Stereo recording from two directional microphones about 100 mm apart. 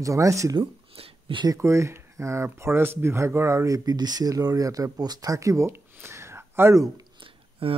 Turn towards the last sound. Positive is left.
turn(degrees=-65)  # may be behind; listen again after turning